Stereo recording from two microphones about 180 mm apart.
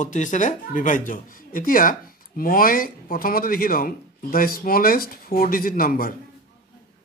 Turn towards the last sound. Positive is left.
turn(degrees=50)  # may be behind; listen again after turning